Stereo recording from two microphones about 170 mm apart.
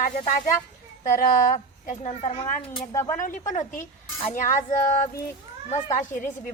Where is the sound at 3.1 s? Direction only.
50° left (ahead or behind).